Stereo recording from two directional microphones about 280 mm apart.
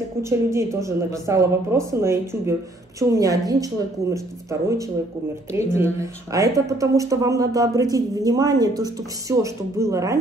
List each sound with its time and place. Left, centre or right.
0.2 s speech: centre